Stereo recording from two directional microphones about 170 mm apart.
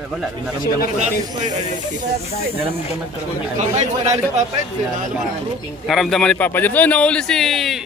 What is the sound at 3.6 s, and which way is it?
Speech, 40° right (ahead or behind).